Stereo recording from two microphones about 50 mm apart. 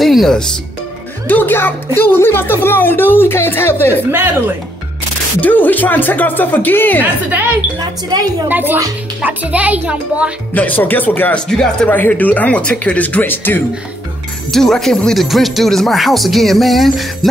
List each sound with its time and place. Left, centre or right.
0.0 s music: centre
1.2 s speech: left
4.1 s speech: right
5.4 s speech: left
7.0 s a woman's voice: right
8.5 s a woman's voice: right
10.5 s speech: left
11.3 s speech: centre
11.9 s speech: left
14.5 s speech: centre
15.1 s music: centre